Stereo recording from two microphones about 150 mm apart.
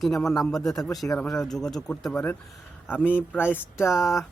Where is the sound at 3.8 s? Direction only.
Centre (ahead or behind).